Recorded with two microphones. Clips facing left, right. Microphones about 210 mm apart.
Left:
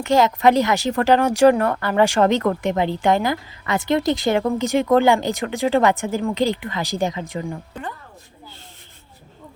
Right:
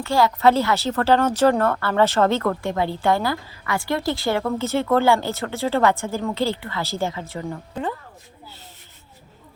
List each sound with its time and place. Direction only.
0.0 s a woman's voice: 20° left (ahead or behind)